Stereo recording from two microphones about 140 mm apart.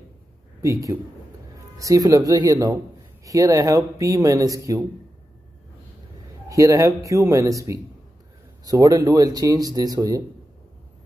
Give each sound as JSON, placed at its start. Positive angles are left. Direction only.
{"t": 0.6, "sound": "a man's voice", "side_deg": -25}
{"t": 6.5, "sound": "speech", "side_deg": -25}